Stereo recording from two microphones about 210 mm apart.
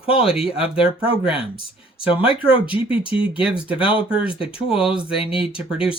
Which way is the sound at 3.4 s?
5° right (ahead or behind).